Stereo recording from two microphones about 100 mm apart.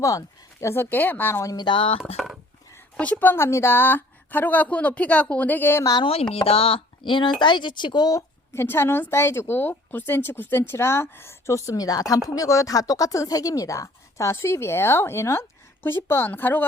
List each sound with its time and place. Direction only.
0.0 s speech: 30° left (ahead or behind)
1.5 s speech: 50° left (ahead or behind)
2.1 s speech: centre (ahead or behind)
3.0 s a woman's voice: 15° left (ahead or behind)
6.0 s chopping: 75° left (ahead or behind)
6.3 s speech: 75° left (ahead or behind); by 8.2 s 45° left (ahead or behind)
8.5 s speech: 25° left (ahead or behind)